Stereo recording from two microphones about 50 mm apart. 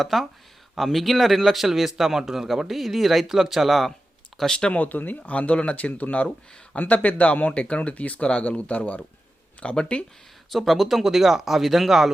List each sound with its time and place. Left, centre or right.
0.0 s speech: centre
4.4 s speech: centre
4.7 s speech: left
10.5 s speech: centre